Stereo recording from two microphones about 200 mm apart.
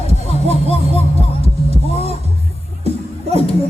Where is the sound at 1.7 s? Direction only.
30° right (ahead or behind).